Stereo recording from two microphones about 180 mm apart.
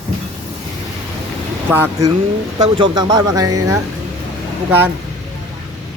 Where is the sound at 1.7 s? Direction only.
15° right (ahead or behind).